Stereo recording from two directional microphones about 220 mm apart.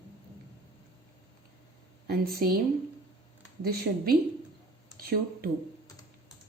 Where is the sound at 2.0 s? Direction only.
45° right (ahead or behind).